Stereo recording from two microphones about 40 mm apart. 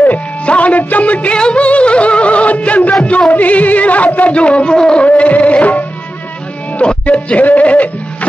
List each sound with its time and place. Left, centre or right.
0.5 s music: left
1.3 s music: left
5.0 s music: left